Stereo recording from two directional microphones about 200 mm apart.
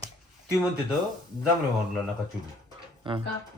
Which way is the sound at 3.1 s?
25° right (ahead or behind).